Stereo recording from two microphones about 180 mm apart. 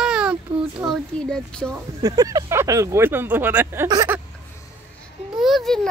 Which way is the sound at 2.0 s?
20° right (ahead or behind).